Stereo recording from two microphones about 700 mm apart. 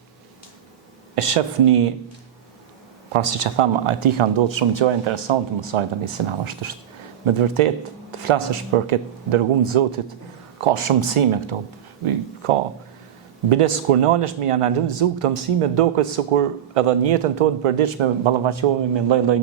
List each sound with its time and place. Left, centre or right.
1.1 s speech: right
3.1 s speech: right